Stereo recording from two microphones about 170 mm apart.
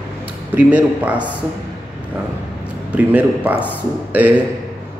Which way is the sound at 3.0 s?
10° right (ahead or behind).